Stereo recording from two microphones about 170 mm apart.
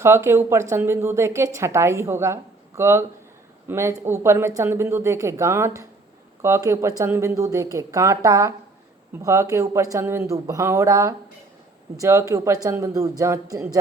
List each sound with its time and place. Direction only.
0.0 s a woman's voice: 15° right (ahead or behind)